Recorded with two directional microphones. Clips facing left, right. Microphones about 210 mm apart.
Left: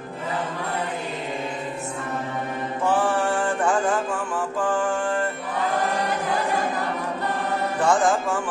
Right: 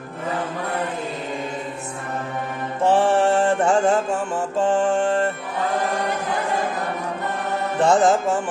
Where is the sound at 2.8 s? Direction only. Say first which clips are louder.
Right 5 dB; 25° right (ahead or behind).